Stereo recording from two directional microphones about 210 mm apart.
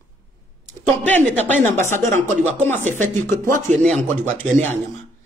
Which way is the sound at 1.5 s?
35° right (ahead or behind).